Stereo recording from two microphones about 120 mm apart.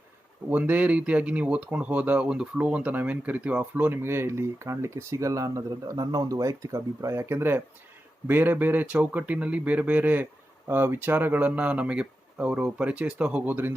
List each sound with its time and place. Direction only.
0.5 s speech: 15° right (ahead or behind)